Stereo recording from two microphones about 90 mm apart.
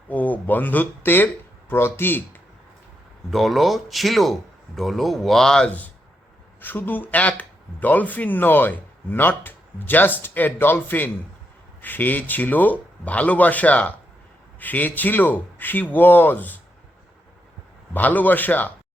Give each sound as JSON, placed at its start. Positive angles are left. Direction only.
{"t": 0.1, "sound": "speech", "side_deg": 20}
{"t": 3.2, "sound": "speech", "side_deg": 0}
{"t": 17.9, "sound": "speech", "side_deg": 20}